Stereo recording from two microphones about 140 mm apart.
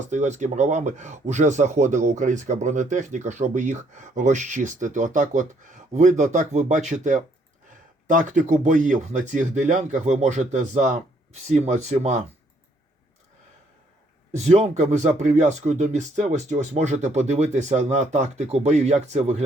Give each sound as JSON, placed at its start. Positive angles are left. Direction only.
{"t": 0.1, "sound": "speech", "side_deg": -60}
{"t": 14.3, "sound": "speech", "side_deg": -50}